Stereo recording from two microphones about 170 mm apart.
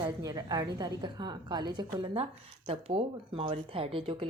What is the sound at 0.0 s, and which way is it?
A woman's voice, 20° right (ahead or behind).